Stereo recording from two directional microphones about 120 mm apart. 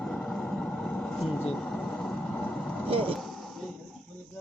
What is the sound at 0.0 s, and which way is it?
Vehicle, 10° left (ahead or behind).